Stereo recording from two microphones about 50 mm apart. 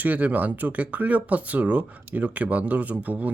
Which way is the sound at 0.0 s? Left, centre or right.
Right.